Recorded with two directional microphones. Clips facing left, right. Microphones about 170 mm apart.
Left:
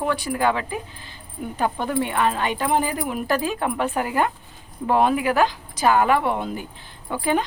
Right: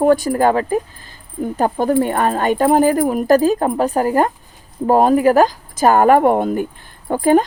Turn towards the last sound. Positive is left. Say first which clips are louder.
# right 9 dB
turn(degrees=-45)  # may be behind; listen again after turning